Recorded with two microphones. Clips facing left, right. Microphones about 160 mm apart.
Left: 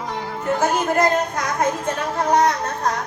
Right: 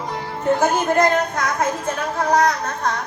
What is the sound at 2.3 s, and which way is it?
Speech, 25° left (ahead or behind).